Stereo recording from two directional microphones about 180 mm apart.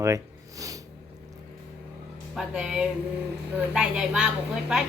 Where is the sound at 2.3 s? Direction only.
5° right (ahead or behind).